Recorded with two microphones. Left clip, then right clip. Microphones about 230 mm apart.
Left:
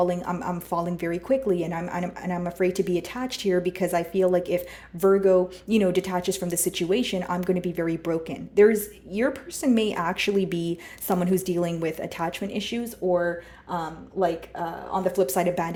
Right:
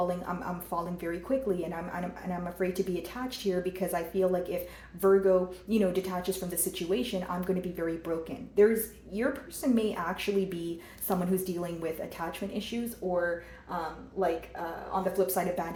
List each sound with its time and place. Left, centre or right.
0.1 s speech: left
15.2 s speech: left